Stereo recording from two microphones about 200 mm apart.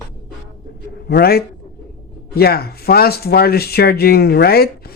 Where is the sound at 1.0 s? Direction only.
50° left (ahead or behind).